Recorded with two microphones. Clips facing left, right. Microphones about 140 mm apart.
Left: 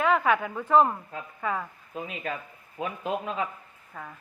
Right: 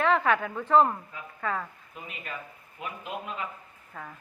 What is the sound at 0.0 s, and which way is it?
A woman's voice, 10° left (ahead or behind).